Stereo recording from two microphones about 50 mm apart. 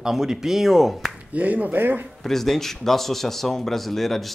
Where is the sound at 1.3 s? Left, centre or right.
Right.